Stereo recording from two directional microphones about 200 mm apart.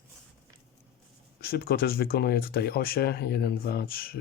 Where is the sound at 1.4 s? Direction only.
50° left (ahead or behind).